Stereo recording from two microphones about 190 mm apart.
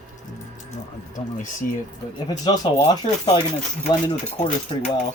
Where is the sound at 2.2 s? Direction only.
20° left (ahead or behind).